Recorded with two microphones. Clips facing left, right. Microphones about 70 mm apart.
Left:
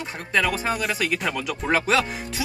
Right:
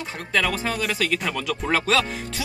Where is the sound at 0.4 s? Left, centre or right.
Centre.